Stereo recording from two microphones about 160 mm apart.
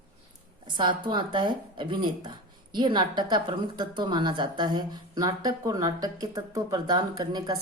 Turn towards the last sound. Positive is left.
turn(degrees=-25)  # may be behind; listen again after turning